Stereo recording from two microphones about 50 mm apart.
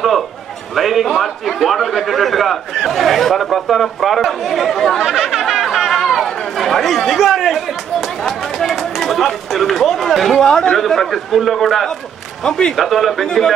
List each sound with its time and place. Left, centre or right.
0.7 s a man's voice: centre
5.0 s chatter: centre
8.2 s run: centre
10.4 s speech: centre
10.8 s a man's voice: centre
12.4 s speech: centre
12.7 s a man's voice: centre